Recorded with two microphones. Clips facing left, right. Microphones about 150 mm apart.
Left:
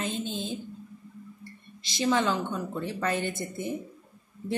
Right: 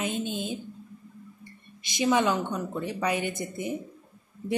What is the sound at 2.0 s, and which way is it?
Speech, 15° right (ahead or behind).